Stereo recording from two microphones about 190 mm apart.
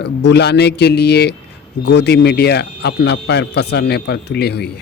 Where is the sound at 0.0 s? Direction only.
65° left (ahead or behind).